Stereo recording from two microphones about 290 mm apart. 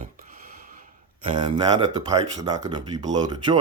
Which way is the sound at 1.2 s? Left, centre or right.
Centre.